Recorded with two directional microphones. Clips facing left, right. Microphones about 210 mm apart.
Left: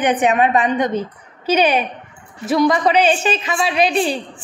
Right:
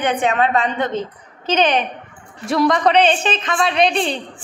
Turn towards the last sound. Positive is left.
turn(degrees=5)  # may be behind; listen again after turning